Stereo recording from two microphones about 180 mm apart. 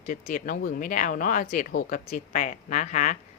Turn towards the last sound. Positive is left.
turn(degrees=45)  # may be behind; listen again after turning